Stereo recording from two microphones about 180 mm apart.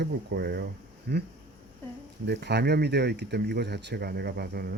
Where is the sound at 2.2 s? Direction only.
65° right (ahead or behind).